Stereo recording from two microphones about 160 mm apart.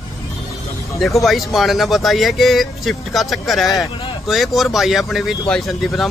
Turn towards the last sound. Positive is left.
turn(degrees=0)  # may be behind; listen again after turning